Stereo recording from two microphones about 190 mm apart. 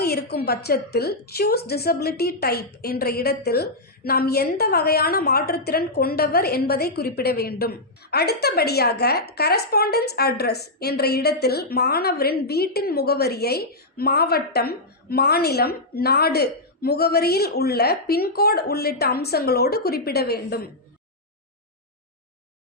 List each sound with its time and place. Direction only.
0.0 s a woman's voice: 55° left (ahead or behind)